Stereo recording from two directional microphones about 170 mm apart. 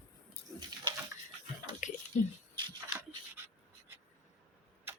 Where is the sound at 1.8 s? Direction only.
45° left (ahead or behind).